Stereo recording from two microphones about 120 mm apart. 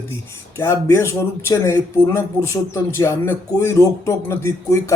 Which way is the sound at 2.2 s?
20° left (ahead or behind).